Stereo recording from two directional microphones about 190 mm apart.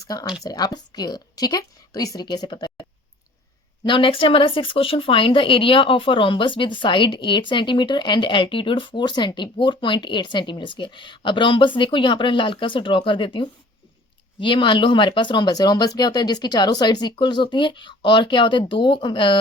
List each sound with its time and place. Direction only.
0.0 s speech: 20° left (ahead or behind)
3.8 s speech: 25° left (ahead or behind)